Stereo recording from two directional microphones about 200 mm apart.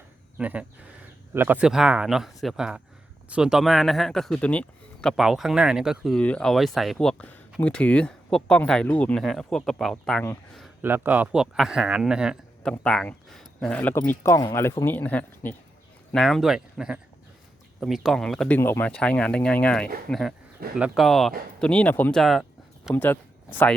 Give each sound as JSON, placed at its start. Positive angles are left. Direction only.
{"t": 0.3, "sound": "speech", "side_deg": -5}
{"t": 10.8, "sound": "speech", "side_deg": -10}